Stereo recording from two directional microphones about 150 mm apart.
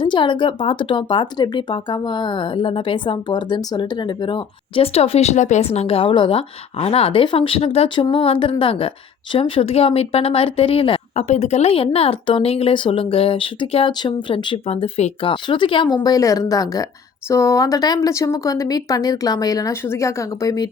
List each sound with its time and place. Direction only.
0.0 s speech: 30° left (ahead or behind)